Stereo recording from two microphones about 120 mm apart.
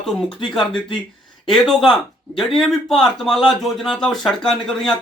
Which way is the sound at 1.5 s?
Centre (ahead or behind).